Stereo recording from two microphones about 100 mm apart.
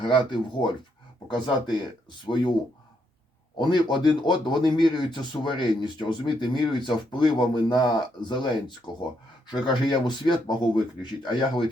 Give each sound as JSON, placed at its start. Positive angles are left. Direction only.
{"t": 0.0, "sound": "a man's voice", "side_deg": 55}
{"t": 3.6, "sound": "a man's voice", "side_deg": 50}